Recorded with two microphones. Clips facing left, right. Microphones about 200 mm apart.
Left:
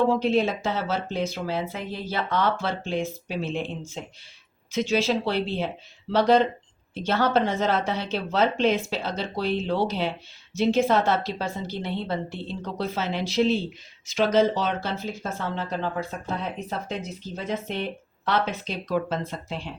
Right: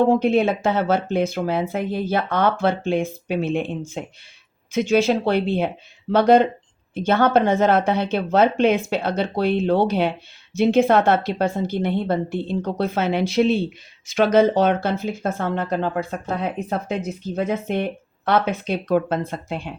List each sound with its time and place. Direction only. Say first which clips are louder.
0.1 s speech: right 5 dB; 55° right (ahead or behind)